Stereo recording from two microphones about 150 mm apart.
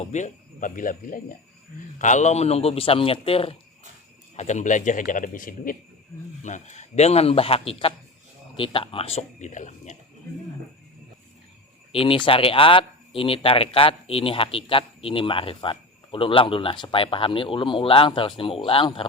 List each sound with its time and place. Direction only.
0.0 s a man's voice: 50° left (ahead or behind)
2.0 s speech: 55° left (ahead or behind)
4.4 s a man's voice: 50° left (ahead or behind)
6.4 s a man's voice: 55° left (ahead or behind)
11.9 s speech: 40° left (ahead or behind)